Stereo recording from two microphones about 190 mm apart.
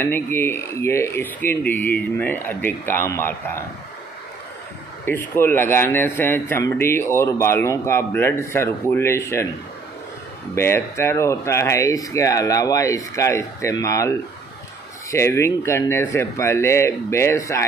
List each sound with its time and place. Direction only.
0.0 s speech: 10° left (ahead or behind)
5.0 s speech: 10° left (ahead or behind)
10.5 s speech: 15° left (ahead or behind)